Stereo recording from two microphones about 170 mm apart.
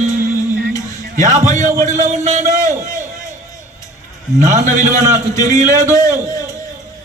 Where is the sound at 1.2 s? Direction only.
50° right (ahead or behind).